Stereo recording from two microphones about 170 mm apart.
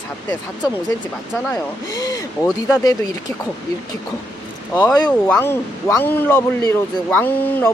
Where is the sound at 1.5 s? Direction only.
20° left (ahead or behind).